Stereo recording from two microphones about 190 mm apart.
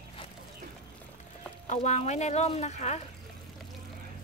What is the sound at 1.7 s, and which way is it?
A woman's voice, 40° left (ahead or behind).